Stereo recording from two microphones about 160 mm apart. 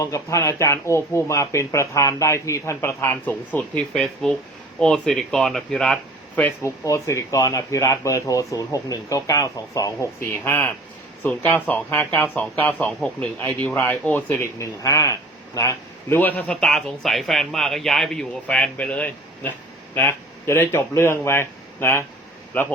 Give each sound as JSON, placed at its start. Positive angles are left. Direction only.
{"t": 0.0, "sound": "speech", "side_deg": 20}